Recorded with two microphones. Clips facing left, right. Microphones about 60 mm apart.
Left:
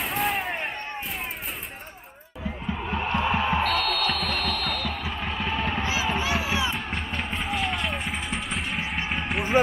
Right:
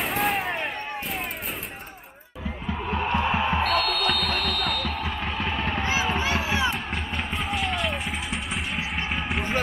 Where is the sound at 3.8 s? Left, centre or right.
Right.